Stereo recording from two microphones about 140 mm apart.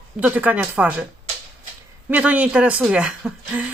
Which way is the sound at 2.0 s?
10° right (ahead or behind).